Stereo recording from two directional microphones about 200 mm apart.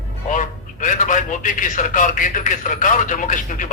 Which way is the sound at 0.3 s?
40° left (ahead or behind).